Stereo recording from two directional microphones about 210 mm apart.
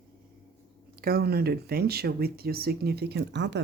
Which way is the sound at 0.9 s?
45° right (ahead or behind).